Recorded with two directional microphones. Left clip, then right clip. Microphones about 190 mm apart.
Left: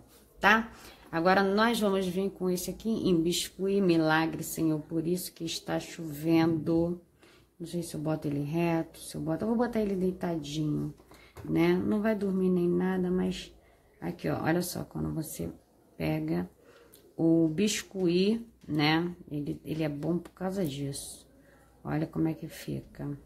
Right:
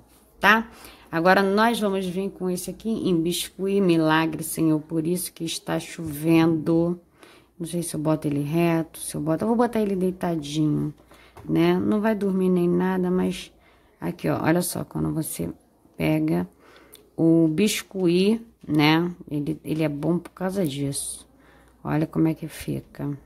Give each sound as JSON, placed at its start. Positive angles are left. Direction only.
{"t": 0.4, "sound": "a woman's voice", "side_deg": -30}